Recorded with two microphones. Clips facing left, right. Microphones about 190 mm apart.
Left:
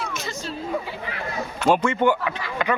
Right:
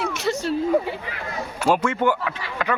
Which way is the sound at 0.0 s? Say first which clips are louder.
Right 7 dB; 65° right (ahead or behind).